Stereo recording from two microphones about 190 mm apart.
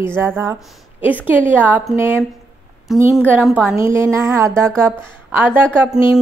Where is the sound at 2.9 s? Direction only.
Centre (ahead or behind).